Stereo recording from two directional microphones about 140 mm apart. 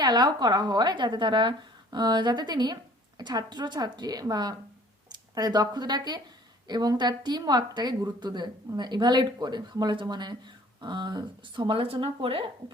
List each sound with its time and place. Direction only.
0.0 s a woman's voice: 30° right (ahead or behind)